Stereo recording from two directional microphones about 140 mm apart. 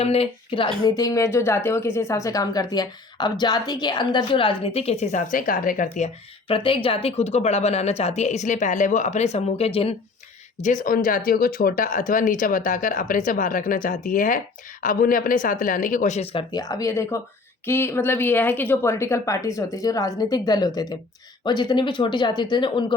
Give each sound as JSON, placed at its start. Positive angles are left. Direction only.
{"t": 0.0, "sound": "speech", "side_deg": 45}
{"t": 0.9, "sound": "speech", "side_deg": 25}
{"t": 6.5, "sound": "speech", "side_deg": 40}
{"t": 10.6, "sound": "speech", "side_deg": 65}